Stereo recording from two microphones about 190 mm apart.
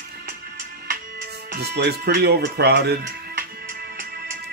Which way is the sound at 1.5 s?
60° right (ahead or behind).